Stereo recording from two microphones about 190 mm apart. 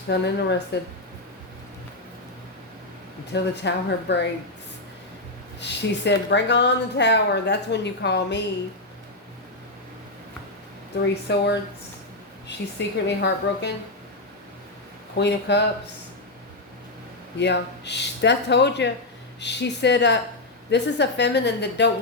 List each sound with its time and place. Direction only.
0.1 s a woman's voice: 65° left (ahead or behind)
3.3 s a woman's voice: 65° left (ahead or behind)
5.5 s a woman's voice: 65° left (ahead or behind)
11.1 s a woman's voice: 65° left (ahead or behind)
15.1 s a woman's voice: 65° left (ahead or behind)
17.3 s a woman's voice: 65° left (ahead or behind)